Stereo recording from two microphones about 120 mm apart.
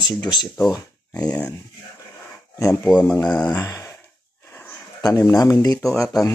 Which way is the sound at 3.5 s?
30° left (ahead or behind).